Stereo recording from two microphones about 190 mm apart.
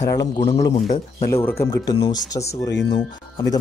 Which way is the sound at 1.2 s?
15° left (ahead or behind).